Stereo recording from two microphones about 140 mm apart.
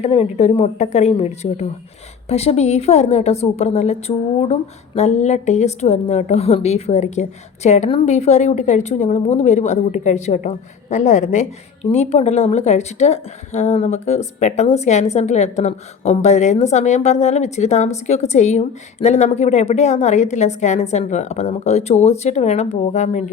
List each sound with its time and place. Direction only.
0.0 s a woman's voice: 50° left (ahead or behind)